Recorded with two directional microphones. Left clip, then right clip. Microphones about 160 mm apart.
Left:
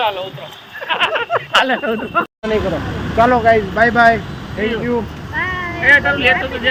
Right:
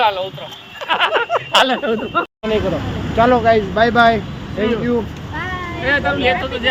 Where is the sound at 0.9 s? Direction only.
35° right (ahead or behind).